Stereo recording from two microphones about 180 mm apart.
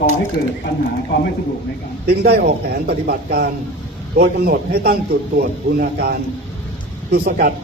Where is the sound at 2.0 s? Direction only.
60° right (ahead or behind).